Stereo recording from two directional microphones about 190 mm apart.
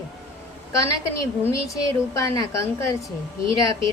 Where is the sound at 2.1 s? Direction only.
15° left (ahead or behind).